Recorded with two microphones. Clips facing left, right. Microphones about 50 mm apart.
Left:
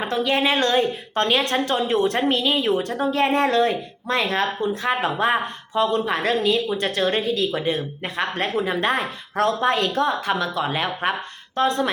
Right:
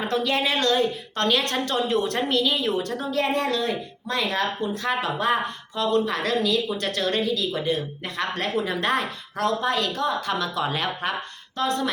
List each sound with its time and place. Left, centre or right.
0.3 s speech: left
9.3 s speech: left
10.3 s speech: centre
11.5 s speech: left